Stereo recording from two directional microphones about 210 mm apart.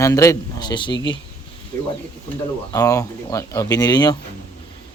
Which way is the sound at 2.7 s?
15° left (ahead or behind).